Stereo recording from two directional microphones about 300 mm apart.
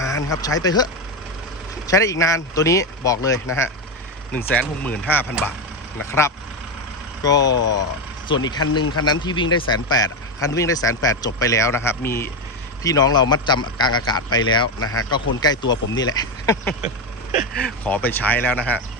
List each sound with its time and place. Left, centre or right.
0.0 s speech: centre
1.9 s speech: centre
7.5 s speech: left
8.3 s speech: centre
14.8 s speech: left
15.4 s speech: centre
17.3 s speech: left
17.6 s speech: centre